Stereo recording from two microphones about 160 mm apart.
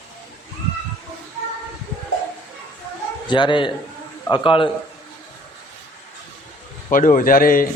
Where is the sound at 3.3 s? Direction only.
30° left (ahead or behind).